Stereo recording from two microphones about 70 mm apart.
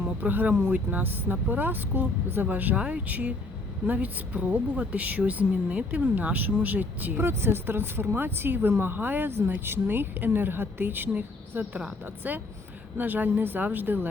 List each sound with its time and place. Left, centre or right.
0.0 s speech: right
7.2 s speech: right